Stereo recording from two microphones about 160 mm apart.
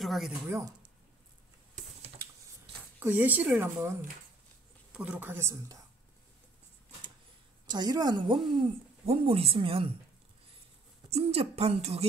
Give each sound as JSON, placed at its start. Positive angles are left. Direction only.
{"t": 0.0, "sound": "speech", "side_deg": 0}
{"t": 0.5, "sound": "a woman's voice", "side_deg": -20}
{"t": 3.0, "sound": "speech", "side_deg": -10}
{"t": 7.7, "sound": "a woman's voice", "side_deg": -25}
{"t": 11.1, "sound": "speech", "side_deg": -40}